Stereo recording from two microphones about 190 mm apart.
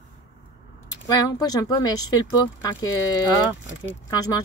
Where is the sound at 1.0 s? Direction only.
20° left (ahead or behind).